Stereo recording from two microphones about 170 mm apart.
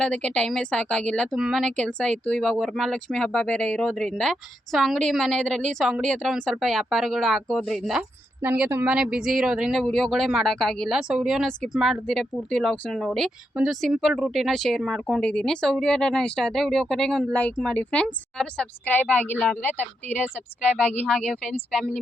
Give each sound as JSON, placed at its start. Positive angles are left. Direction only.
{"t": 0.0, "sound": "speech", "side_deg": 5}
{"t": 20.2, "sound": "speech", "side_deg": -5}
{"t": 21.4, "sound": "speech", "side_deg": 5}